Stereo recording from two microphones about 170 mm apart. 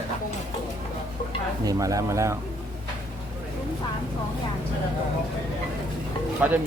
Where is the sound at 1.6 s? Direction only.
20° right (ahead or behind).